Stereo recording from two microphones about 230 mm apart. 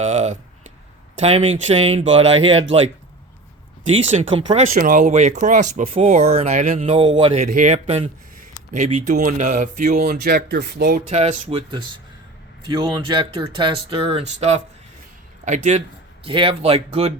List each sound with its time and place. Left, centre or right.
0.0 s speech: right
4.1 s speech: right
4.7 s speech: right
7.4 s speech: right